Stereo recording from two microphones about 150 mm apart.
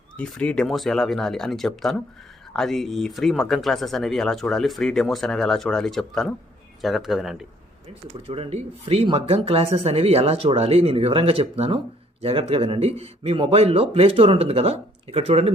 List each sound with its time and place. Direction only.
0.2 s speech: 5° left (ahead or behind)
8.3 s speech: 40° right (ahead or behind)